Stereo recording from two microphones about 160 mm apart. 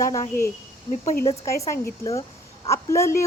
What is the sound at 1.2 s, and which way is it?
Speech, 20° left (ahead or behind).